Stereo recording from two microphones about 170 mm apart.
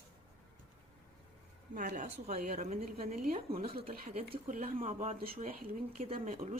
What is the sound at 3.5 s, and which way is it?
Speech, 60° right (ahead or behind).